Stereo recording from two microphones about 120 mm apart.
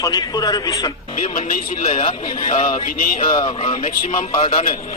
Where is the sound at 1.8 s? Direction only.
50° left (ahead or behind).